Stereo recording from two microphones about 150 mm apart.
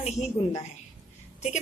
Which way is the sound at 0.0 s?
45° left (ahead or behind).